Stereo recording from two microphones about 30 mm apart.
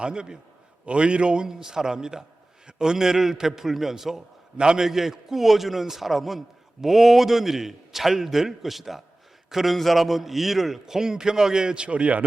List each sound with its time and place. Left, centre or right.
0.0 s a man's voice: right
1.5 s a man's voice: centre
4.5 s a man's voice: right
4.8 s a man's voice: centre; by 11.9 s right
11.9 s speech: right